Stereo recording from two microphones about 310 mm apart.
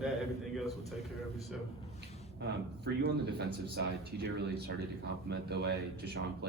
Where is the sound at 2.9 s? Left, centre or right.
Right.